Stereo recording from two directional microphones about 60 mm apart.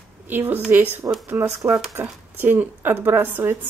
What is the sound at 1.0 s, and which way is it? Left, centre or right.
Speech, right.